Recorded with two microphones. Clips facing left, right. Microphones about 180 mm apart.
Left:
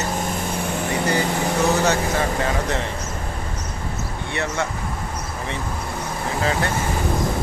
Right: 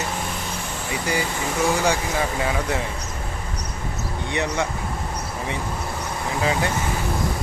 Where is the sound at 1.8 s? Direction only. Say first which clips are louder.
Left 2 dB; 10° right (ahead or behind).